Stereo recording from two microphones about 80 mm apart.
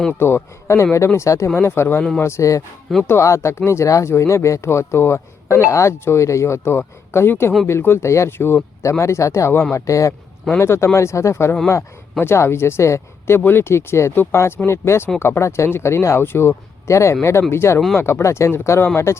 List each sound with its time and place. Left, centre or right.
0.1 s speech: left